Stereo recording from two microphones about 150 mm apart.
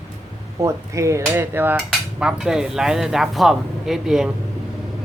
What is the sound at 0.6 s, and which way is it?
Speech, 20° right (ahead or behind).